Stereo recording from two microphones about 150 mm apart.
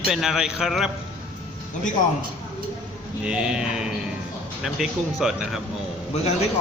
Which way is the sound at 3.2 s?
5° right (ahead or behind).